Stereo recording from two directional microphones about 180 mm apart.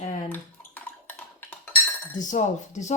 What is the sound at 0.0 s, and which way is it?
Bathtub, 45° left (ahead or behind).